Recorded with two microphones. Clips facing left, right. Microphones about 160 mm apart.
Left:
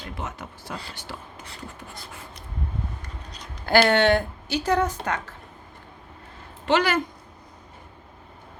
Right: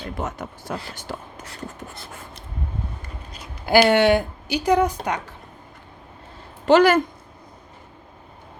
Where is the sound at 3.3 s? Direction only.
10° right (ahead or behind).